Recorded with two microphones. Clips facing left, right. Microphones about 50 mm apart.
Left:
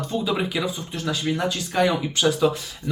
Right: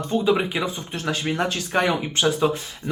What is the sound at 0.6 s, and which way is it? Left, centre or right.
Speech, right.